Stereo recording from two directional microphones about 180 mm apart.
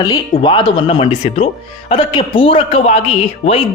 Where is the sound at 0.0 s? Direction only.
25° left (ahead or behind).